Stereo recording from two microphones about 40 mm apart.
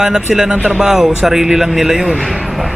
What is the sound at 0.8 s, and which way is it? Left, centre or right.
A man's voice, centre.